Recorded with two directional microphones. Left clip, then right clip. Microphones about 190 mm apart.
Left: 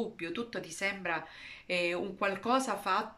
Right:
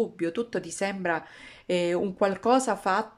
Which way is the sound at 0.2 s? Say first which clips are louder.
Right 8 dB; 45° right (ahead or behind).